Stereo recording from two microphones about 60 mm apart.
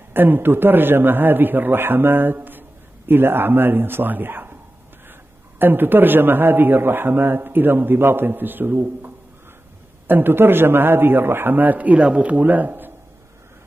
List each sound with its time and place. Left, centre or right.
0.1 s a man's voice: right
5.6 s a man's voice: right